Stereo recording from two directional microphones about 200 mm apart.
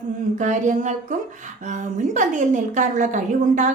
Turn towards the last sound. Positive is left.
turn(degrees=-40)  # may be behind; listen again after turning